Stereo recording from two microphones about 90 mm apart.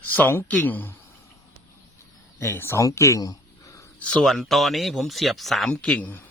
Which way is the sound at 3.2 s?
40° left (ahead or behind).